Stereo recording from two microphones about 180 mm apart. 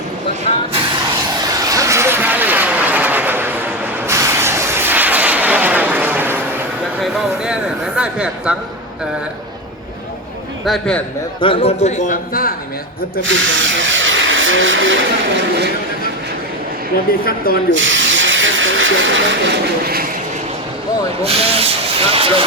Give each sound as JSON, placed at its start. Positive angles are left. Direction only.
{"t": 1.5, "sound": "vehicle", "side_deg": -20}
{"t": 7.0, "sound": "a sound", "side_deg": 0}
{"t": 10.7, "sound": "a man's voice", "side_deg": 5}
{"t": 11.3, "sound": "a man's voice", "side_deg": 30}
{"t": 13.2, "sound": "speech", "side_deg": -90}
{"t": 17.1, "sound": "speech", "side_deg": 55}
{"t": 17.7, "sound": "hiss", "side_deg": -90}
{"t": 21.2, "sound": "speech", "side_deg": -35}